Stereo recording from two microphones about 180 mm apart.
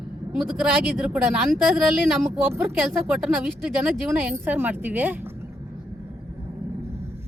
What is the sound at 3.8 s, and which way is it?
Speech, 10° right (ahead or behind).